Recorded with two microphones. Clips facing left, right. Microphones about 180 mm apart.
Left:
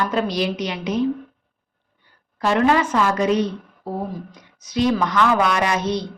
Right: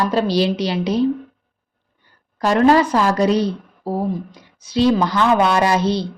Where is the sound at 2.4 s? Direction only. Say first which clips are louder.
Right 4 dB; 40° right (ahead or behind).